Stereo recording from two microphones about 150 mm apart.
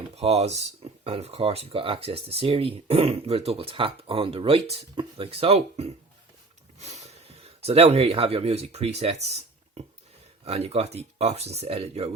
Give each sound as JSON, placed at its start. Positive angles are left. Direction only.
{"t": 0.2, "sound": "speech", "side_deg": -45}
{"t": 6.7, "sound": "a sound", "side_deg": -45}
{"t": 7.6, "sound": "speech", "side_deg": -45}